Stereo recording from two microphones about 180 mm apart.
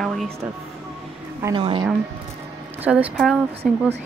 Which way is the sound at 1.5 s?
30° right (ahead or behind).